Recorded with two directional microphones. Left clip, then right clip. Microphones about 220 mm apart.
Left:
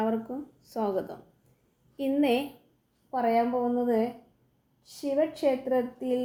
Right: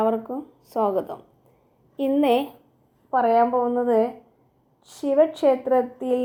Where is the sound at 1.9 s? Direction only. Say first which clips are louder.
Right 6 dB; 20° right (ahead or behind).